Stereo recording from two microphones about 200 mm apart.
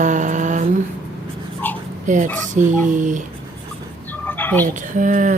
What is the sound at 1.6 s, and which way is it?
Dog, 10° left (ahead or behind).